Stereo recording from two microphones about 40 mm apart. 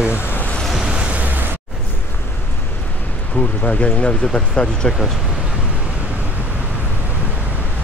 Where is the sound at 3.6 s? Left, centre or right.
Left.